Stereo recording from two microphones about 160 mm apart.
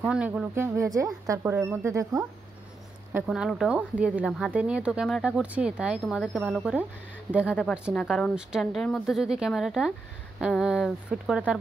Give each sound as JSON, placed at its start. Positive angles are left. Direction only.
{"t": 0.0, "sound": "a woman's voice", "side_deg": -5}
{"t": 0.7, "sound": "speech", "side_deg": -20}
{"t": 3.3, "sound": "a woman's voice", "side_deg": 0}
{"t": 7.9, "sound": "a woman's voice", "side_deg": 5}